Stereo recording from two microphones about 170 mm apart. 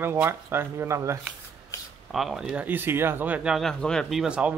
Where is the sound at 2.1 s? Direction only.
Centre (ahead or behind).